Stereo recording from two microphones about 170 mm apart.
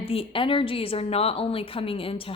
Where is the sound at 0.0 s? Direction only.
35° left (ahead or behind).